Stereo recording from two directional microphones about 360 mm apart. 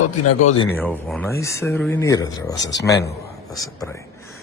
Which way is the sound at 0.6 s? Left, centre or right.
Centre.